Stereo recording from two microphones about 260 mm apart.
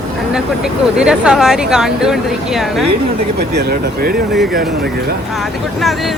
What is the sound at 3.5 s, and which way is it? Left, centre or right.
Speech, right.